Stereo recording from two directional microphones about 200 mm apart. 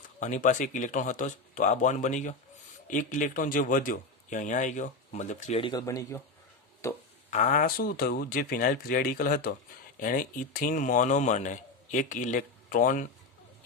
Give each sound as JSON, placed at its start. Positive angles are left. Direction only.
{"t": 0.2, "sound": "speech", "side_deg": 40}
{"t": 6.8, "sound": "a sound", "side_deg": 15}
{"t": 7.3, "sound": "speech", "side_deg": 40}